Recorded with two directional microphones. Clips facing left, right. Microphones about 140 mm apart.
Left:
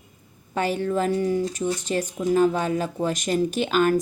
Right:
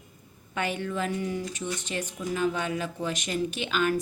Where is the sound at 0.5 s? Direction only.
35° left (ahead or behind).